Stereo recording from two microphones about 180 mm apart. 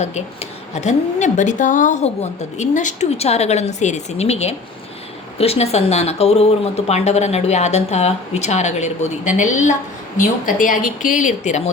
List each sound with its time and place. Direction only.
0.7 s speech: 40° left (ahead or behind)